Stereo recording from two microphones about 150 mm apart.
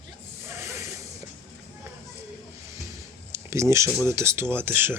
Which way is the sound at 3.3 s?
20° right (ahead or behind).